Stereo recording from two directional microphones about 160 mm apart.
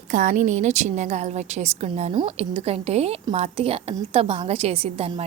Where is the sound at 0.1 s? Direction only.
55° right (ahead or behind).